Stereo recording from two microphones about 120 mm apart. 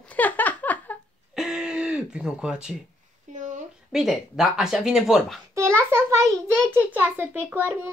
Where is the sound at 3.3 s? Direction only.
90° right.